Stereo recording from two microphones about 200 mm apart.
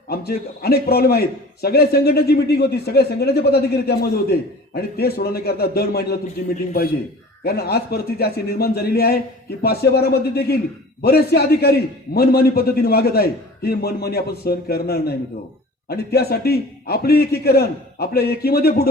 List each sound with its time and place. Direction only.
0.1 s a man's voice: 50° left (ahead or behind)